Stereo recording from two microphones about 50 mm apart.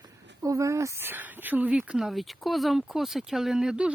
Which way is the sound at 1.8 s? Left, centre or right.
Centre.